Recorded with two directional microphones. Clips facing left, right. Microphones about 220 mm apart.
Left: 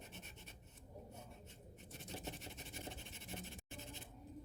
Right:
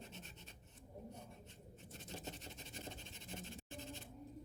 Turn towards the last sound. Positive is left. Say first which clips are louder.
# right 1 dB
turn(degrees=15)  # may be behind; listen again after turning